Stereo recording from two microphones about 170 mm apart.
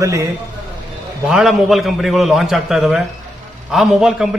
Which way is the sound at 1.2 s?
Centre (ahead or behind).